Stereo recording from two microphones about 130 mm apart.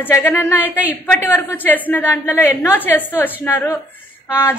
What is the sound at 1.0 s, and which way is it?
A woman's voice, 15° left (ahead or behind).